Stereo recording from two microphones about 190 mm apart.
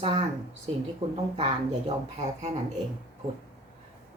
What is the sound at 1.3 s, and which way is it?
Speech, 35° right (ahead or behind).